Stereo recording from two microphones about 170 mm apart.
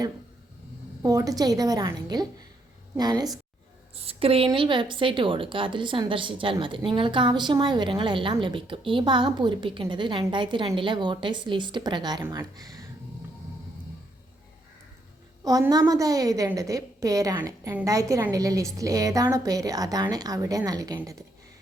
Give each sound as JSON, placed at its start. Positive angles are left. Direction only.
{"t": 1.0, "sound": "speech", "side_deg": -20}
{"t": 3.9, "sound": "speech", "side_deg": -35}
{"t": 15.4, "sound": "speech", "side_deg": -20}